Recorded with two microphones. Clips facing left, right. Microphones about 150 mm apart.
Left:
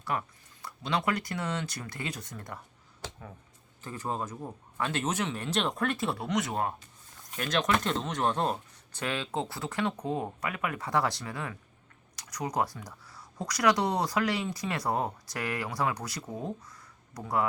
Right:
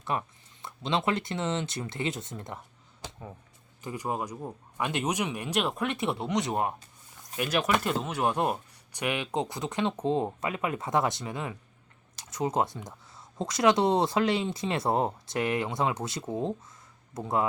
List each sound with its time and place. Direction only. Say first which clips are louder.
0.0 s speech: right 1 dB; 20° right (ahead or behind)
3.8 s speech: right 2 dB; 15° right (ahead or behind)
5.9 s speech: right 1 dB; 20° right (ahead or behind)
7.3 s speech: right 1 dB; 10° right (ahead or behind)